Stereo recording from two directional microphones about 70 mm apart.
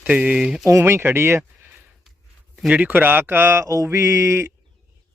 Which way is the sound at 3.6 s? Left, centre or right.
Right.